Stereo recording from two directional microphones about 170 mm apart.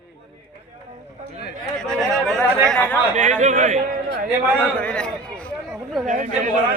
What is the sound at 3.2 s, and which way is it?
Speech, 50° right (ahead or behind).